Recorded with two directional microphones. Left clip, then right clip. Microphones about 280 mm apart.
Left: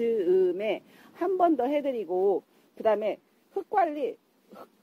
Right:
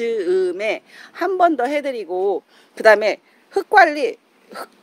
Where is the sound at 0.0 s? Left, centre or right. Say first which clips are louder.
Right 5 dB; centre.